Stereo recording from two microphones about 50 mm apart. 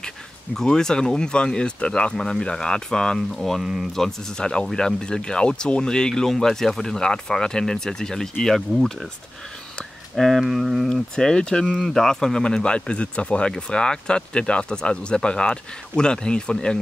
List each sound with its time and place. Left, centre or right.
0.6 s speech: centre
2.1 s speech: centre
10.1 s speech: centre
10.9 s speech: centre
11.6 s speech: centre